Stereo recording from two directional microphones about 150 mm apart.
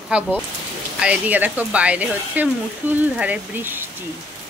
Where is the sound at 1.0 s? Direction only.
10° right (ahead or behind).